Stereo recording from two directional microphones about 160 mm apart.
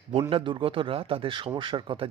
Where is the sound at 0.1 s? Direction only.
35° right (ahead or behind).